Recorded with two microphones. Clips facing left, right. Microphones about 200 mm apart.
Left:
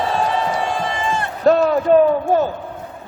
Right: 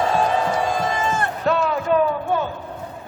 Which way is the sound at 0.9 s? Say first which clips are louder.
Even; 45° right (ahead or behind).